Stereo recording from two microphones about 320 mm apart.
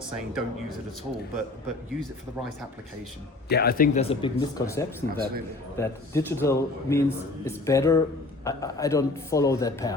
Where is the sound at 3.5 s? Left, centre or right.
Left.